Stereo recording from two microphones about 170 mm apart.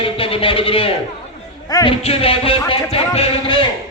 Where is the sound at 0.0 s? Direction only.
35° left (ahead or behind).